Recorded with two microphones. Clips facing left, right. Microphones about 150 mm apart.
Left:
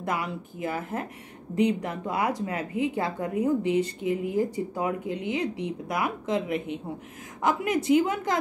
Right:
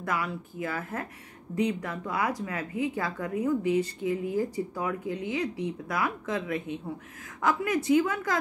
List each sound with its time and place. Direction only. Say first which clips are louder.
0.0 s speech: left 1 dB; 20° left (ahead or behind)